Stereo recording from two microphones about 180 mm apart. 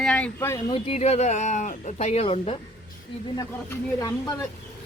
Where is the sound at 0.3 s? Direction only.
15° left (ahead or behind).